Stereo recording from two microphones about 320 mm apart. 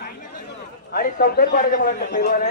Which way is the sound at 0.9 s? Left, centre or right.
Left.